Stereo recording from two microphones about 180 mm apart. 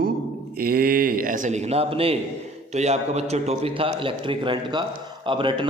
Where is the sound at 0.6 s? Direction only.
55° right (ahead or behind).